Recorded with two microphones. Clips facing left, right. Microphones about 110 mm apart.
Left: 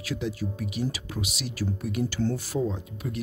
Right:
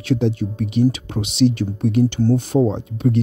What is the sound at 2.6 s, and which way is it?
Speech, 30° right (ahead or behind).